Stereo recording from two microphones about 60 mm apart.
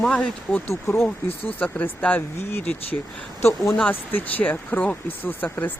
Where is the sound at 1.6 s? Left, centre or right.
Left.